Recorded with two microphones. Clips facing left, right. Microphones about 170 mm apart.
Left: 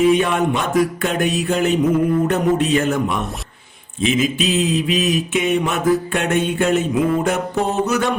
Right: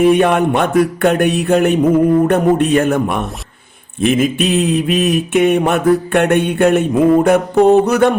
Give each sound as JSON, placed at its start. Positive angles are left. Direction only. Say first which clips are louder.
{"t": 0.0, "sound": "mantra", "louder": "right 4 dB", "side_deg": -60}